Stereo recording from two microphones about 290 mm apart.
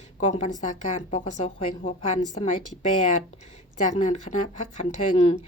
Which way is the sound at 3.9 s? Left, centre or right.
Left.